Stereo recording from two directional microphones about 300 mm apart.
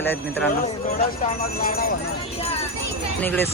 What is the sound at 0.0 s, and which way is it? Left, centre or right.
Speech, centre.